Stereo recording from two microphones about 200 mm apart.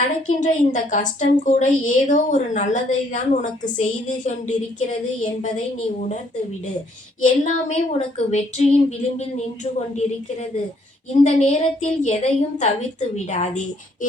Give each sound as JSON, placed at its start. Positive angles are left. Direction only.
{"t": 0.2, "sound": "a woman's voice", "side_deg": 40}
{"t": 7.2, "sound": "a woman's voice", "side_deg": 40}